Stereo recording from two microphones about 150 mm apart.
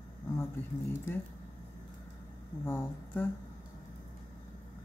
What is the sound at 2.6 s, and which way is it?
Speech, 15° left (ahead or behind).